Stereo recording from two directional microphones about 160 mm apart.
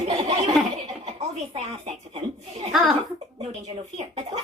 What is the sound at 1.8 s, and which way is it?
Speech, 40° right (ahead or behind).